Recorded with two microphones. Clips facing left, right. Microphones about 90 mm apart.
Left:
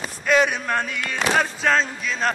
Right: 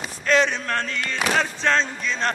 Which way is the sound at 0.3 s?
10° left (ahead or behind).